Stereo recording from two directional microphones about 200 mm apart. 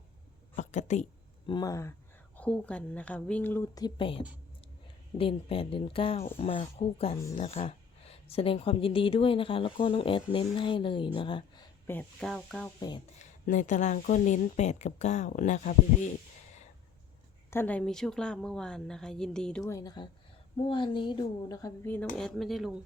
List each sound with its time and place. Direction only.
0.5 s a sound: 35° left (ahead or behind)
1.5 s a woman's voice: 20° left (ahead or behind)
11.9 s a woman's voice: 5° left (ahead or behind)
13.1 s speech: 40° left (ahead or behind)
17.5 s a woman's voice: 10° left (ahead or behind)
19.6 s speech: 15° left (ahead or behind)
22.2 s a woman's voice: centre (ahead or behind)